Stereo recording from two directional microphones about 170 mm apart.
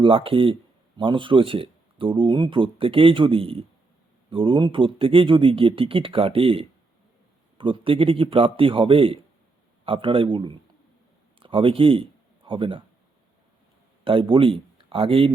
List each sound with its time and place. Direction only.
0.0 s speech: 30° right (ahead or behind)
14.0 s speech: 30° right (ahead or behind)